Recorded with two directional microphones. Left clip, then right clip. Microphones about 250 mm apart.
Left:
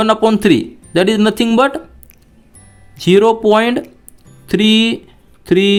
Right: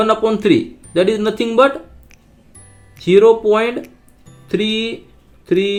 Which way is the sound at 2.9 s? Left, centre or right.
Left.